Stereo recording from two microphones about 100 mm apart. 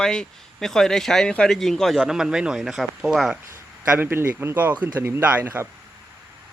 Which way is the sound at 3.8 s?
20° right (ahead or behind).